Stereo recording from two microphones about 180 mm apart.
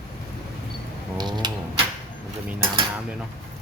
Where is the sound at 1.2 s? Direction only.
25° right (ahead or behind).